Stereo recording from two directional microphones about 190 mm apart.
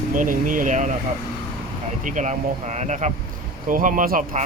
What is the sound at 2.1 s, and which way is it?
Speech, 40° right (ahead or behind).